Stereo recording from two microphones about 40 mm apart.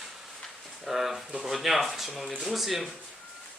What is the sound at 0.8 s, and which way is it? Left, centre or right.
Speech, centre.